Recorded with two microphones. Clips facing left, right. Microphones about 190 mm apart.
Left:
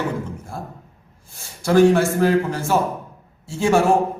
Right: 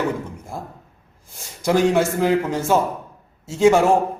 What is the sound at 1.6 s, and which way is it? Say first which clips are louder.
A man's voice: left 3 dB; 15° right (ahead or behind).